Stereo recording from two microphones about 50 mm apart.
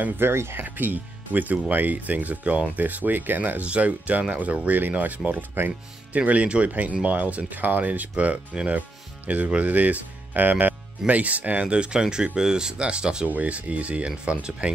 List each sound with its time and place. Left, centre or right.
0.2 s speech: right
0.7 s speech: right
11.6 s speech: centre